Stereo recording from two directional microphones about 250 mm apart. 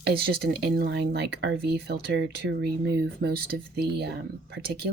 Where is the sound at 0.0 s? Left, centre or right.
Right.